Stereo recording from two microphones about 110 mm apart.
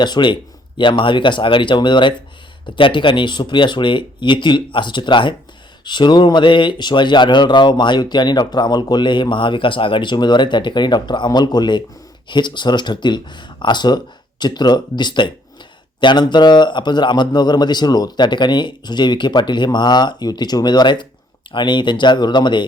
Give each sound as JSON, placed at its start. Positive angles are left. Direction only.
{"t": 0.0, "sound": "speech", "side_deg": 45}